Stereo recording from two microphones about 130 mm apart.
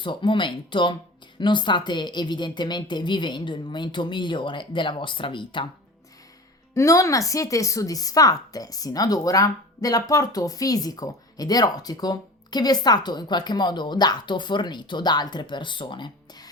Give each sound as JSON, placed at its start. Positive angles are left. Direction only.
{"t": 0.0, "sound": "speech", "side_deg": 40}
{"t": 6.7, "sound": "speech", "side_deg": 25}